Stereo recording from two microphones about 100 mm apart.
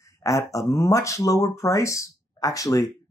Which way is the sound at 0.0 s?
30° left (ahead or behind).